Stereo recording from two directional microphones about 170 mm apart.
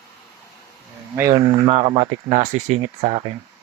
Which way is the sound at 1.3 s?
30° right (ahead or behind).